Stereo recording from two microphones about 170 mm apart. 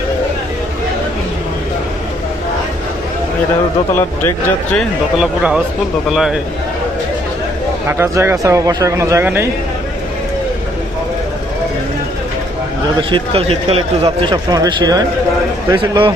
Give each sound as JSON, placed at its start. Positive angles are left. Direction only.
{"t": 3.9, "sound": "speech", "side_deg": 15}
{"t": 7.9, "sound": "speech", "side_deg": -15}
{"t": 13.0, "sound": "a man's voice", "side_deg": -30}